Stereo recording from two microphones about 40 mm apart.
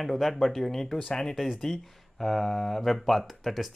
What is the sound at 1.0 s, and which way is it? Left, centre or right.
Speech, left.